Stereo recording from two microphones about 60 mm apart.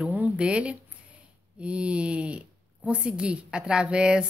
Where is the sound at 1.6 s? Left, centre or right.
Centre.